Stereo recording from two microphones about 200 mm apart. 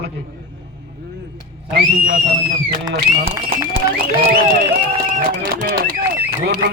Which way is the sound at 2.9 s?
50° right (ahead or behind).